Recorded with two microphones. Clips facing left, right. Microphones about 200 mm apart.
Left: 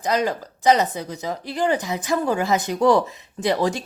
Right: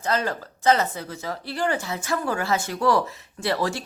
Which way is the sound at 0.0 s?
15° left (ahead or behind).